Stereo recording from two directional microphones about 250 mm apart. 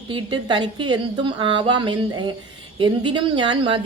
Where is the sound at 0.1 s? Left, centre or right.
Centre.